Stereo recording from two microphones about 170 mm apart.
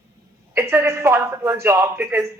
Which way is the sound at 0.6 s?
15° right (ahead or behind).